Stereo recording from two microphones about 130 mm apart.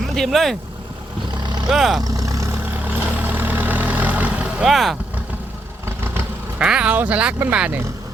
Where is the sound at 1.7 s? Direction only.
5° right (ahead or behind).